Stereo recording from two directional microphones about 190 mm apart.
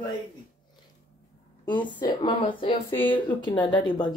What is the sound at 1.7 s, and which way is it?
Speech, 25° left (ahead or behind).